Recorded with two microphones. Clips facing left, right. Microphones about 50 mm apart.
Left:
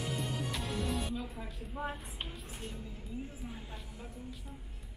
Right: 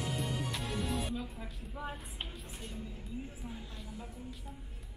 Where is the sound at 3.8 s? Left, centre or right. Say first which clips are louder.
Right 1 dB; centre.